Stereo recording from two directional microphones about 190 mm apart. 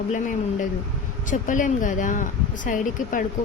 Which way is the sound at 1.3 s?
45° left (ahead or behind).